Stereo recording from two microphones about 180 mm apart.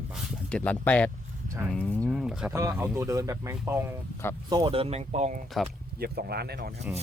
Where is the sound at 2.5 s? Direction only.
15° right (ahead or behind).